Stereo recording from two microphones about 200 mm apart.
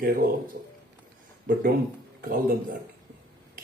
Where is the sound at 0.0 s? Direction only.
50° right (ahead or behind).